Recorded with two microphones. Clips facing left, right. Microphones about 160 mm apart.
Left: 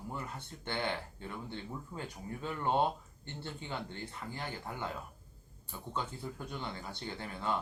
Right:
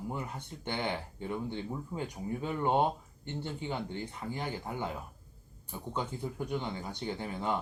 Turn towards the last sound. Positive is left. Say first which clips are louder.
# right 4 dB
turn(degrees=-15)  # may be behind; listen again after turning